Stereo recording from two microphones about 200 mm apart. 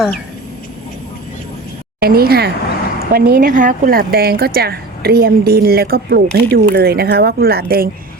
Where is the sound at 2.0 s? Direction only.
50° right (ahead or behind).